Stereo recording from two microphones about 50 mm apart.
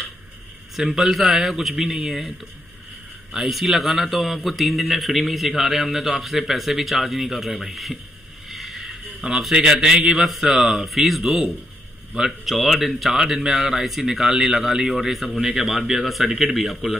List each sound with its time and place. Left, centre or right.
0.9 s a man's voice: centre
3.3 s a man's voice: centre
8.5 s vehicle: centre
9.5 s a man's voice: centre